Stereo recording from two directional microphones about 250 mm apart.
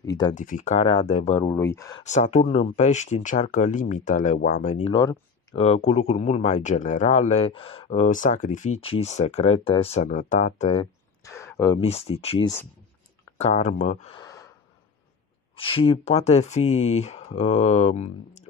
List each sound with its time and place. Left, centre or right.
0.0 s speech: centre
0.3 s speech: left; by 2.0 s centre
2.0 s speech: left
11.2 s a sound: centre
11.8 s speech: left
15.5 s speech: left